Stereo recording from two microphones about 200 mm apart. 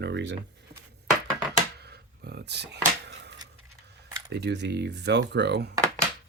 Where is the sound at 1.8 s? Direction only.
55° right (ahead or behind).